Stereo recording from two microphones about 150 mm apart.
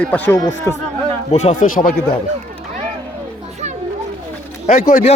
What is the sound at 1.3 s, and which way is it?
Speech, 55° left (ahead or behind).